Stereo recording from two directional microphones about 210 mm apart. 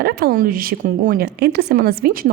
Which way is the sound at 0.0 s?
45° right (ahead or behind).